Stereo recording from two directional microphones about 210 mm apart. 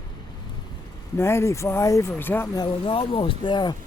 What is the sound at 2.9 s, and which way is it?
Speech, 25° left (ahead or behind).